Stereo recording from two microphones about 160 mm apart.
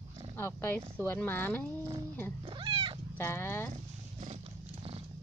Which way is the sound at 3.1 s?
15° left (ahead or behind).